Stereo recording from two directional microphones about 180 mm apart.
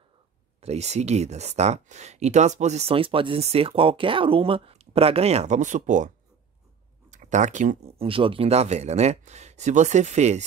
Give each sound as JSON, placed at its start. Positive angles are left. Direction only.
{"t": 0.6, "sound": "speech", "side_deg": -35}